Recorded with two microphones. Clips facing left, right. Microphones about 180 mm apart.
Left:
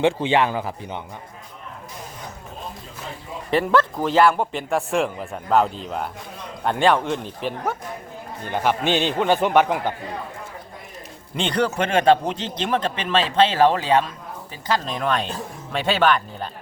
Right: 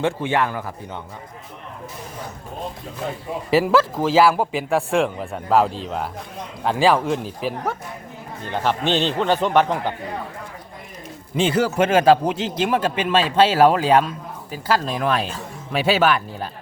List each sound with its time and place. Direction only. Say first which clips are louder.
0.0 s a man's voice: left 2 dB; 20° left (ahead or behind)
3.5 s a man's voice: right 2 dB; 5° right (ahead or behind)
8.4 s a man's voice: even; 10° left (ahead or behind)
11.3 s a man's voice: right 3 dB; 5° right (ahead or behind)